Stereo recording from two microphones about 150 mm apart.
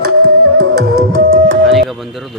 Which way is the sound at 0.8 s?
75° right (ahead or behind).